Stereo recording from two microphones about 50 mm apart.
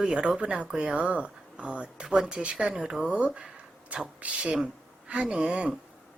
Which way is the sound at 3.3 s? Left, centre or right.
Centre.